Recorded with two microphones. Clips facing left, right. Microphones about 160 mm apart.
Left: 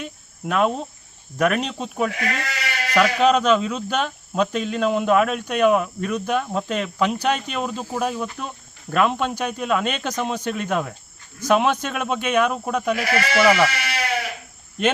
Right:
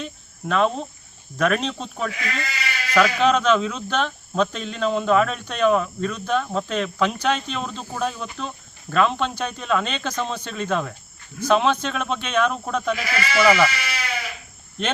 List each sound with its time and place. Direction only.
0.0 s cricket: 10° left (ahead or behind)
1.4 s speech: 10° left (ahead or behind)
2.1 s speech: 60° left (ahead or behind)
3.2 s speech: 10° left (ahead or behind)
13.0 s speech: 65° left (ahead or behind)
13.4 s speech: centre (ahead or behind)
13.7 s sheep: 65° left (ahead or behind)